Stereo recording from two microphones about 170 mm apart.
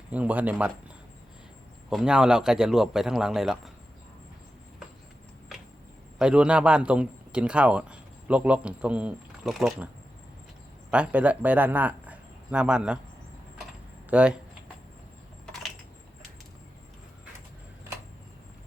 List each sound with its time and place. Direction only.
0.1 s speech: 10° right (ahead or behind)
1.9 s a man's voice: 5° right (ahead or behind)
6.1 s speech: 5° right (ahead or behind)
10.9 s speech: 5° right (ahead or behind)
14.1 s speech: 5° right (ahead or behind)